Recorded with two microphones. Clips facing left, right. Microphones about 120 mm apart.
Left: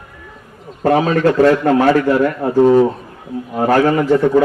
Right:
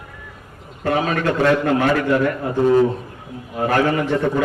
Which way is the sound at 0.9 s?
35° left (ahead or behind).